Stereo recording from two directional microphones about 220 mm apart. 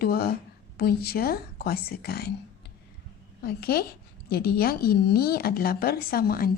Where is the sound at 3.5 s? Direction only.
45° left (ahead or behind).